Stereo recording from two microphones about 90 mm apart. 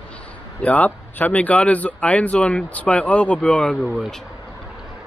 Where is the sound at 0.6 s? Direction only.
15° left (ahead or behind).